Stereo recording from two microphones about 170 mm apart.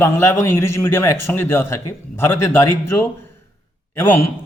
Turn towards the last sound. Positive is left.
turn(degrees=10)  # may be behind; listen again after turning